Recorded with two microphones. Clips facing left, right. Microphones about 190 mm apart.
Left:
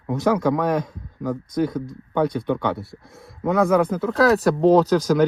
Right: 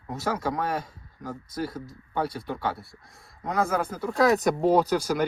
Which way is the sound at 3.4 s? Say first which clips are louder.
Left 8 dB; 65° left (ahead or behind).